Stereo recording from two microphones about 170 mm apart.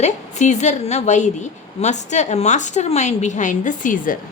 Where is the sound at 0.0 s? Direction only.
45° left (ahead or behind).